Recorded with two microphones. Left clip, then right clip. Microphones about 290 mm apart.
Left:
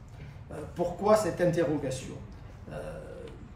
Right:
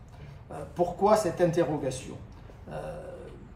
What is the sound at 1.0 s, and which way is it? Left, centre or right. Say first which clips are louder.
Speech: even; centre.